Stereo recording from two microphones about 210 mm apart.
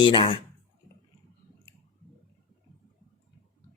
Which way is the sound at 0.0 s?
25° left (ahead or behind).